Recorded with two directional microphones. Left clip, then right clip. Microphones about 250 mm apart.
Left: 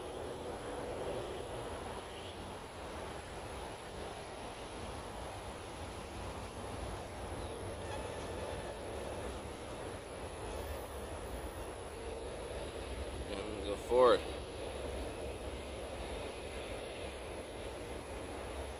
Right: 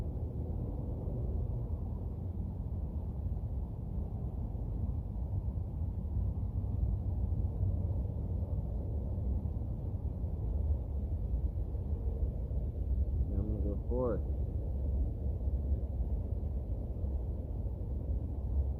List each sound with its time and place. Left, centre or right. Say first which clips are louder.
13.9 s vehicle: left 9 dB; left